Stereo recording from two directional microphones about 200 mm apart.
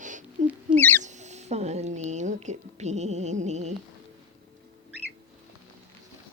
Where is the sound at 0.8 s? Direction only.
10° left (ahead or behind).